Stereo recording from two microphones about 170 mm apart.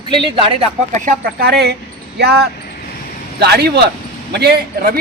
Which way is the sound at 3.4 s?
70° right (ahead or behind).